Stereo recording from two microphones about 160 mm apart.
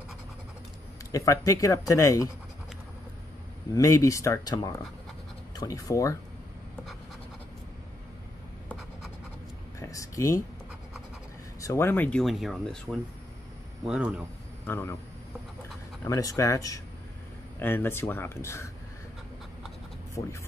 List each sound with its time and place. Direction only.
1.1 s speech: 20° left (ahead or behind)
3.7 s speech: 20° left (ahead or behind)
9.8 s a sound: 20° left (ahead or behind)
11.6 s speech: 15° left (ahead or behind); by 14.2 s 5° right (ahead or behind)
14.7 s speech: 15° left (ahead or behind)
16.0 s speech: 20° left (ahead or behind)
20.2 s speech: 20° left (ahead or behind)